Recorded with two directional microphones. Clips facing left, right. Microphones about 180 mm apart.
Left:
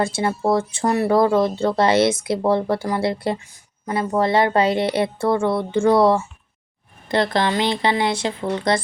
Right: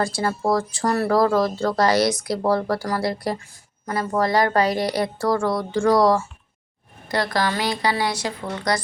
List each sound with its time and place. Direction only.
0.0 s speech: 25° left (ahead or behind)